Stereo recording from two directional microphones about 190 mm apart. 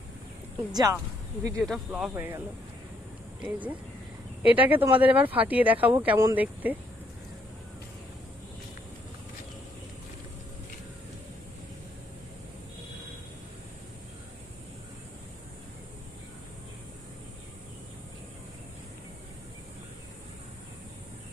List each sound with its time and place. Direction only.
0.7 s speech: 20° right (ahead or behind)
1.6 s speech: centre (ahead or behind)
2.1 s speech: 15° right (ahead or behind)
3.4 s speech: 10° right (ahead or behind)